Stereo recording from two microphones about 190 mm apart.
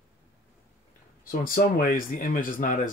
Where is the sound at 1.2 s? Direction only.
50° left (ahead or behind).